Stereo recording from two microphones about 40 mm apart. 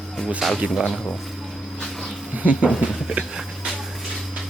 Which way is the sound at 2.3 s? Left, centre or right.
Right.